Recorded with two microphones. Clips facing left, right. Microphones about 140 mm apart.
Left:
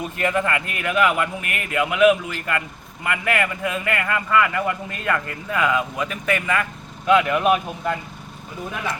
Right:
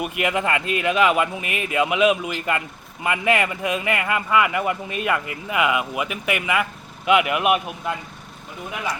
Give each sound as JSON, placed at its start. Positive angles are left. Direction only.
{"t": 0.0, "sound": "a man's voice", "side_deg": -15}